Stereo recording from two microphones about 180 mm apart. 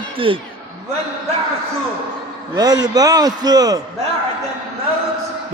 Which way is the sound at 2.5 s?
20° right (ahead or behind).